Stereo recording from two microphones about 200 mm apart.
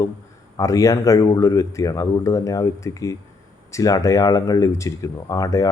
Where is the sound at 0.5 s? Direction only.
15° left (ahead or behind).